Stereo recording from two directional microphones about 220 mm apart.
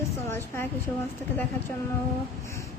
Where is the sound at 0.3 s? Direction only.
10° left (ahead or behind).